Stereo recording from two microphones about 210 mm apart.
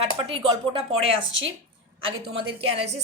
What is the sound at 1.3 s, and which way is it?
Speech, 60° right (ahead or behind).